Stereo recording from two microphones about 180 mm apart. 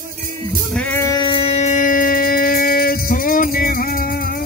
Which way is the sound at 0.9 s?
20° left (ahead or behind).